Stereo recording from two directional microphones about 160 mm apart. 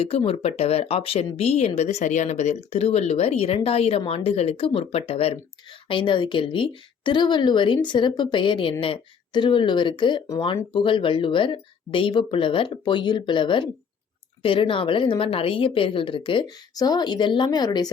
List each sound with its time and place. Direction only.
0.0 s speech: 35° left (ahead or behind)